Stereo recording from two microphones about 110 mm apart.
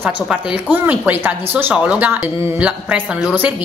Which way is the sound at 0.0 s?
15° right (ahead or behind).